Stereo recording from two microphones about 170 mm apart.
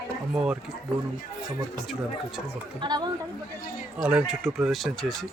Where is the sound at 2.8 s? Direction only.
25° right (ahead or behind).